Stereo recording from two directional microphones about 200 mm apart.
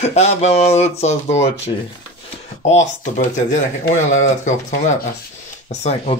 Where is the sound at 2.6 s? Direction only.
35° left (ahead or behind).